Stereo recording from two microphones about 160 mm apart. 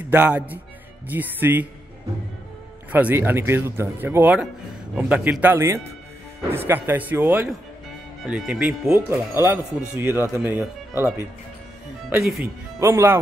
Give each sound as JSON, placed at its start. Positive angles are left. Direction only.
{"t": 0.1, "sound": "speech", "side_deg": -10}
{"t": 2.9, "sound": "speech", "side_deg": -10}
{"t": 12.2, "sound": "speech", "side_deg": 0}
{"t": 12.8, "sound": "speech", "side_deg": -15}